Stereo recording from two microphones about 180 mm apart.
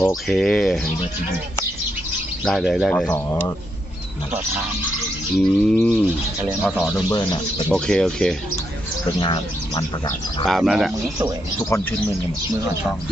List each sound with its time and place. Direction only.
0.3 s speech: centre (ahead or behind)
2.4 s speech: centre (ahead or behind)
2.9 s speech: 10° left (ahead or behind)
5.4 s speech: 5° left (ahead or behind)
6.4 s speech: 10° right (ahead or behind)
7.1 s speech: 25° left (ahead or behind)
7.7 s speech: 5° left (ahead or behind)
9.1 s speech: 25° left (ahead or behind)
10.4 s speech: centre (ahead or behind)
11.7 s speech: 15° left (ahead or behind)